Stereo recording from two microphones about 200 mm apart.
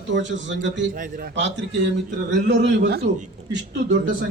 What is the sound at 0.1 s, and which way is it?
Speech, 65° right (ahead or behind).